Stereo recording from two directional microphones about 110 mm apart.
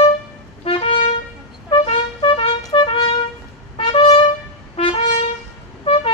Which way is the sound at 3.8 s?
55° left (ahead or behind).